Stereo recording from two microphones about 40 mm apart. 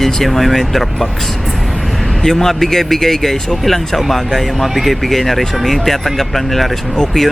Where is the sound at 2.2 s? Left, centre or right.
Centre.